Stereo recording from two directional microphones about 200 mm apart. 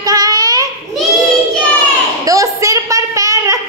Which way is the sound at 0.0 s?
20° right (ahead or behind).